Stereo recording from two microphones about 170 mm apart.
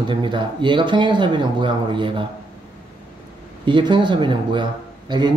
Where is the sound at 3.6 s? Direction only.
30° right (ahead or behind).